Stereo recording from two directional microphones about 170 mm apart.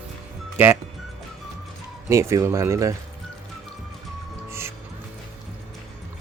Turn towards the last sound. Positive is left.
turn(degrees=-15)  # may be behind; listen again after turning